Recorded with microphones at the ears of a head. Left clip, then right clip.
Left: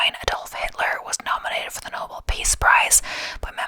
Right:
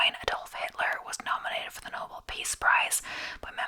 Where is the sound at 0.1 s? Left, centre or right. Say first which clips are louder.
Left 7 dB; left.